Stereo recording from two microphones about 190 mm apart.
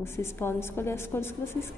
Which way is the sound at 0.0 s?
15° left (ahead or behind).